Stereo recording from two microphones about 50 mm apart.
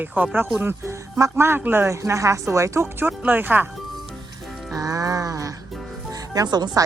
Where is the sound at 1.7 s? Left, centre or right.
Right.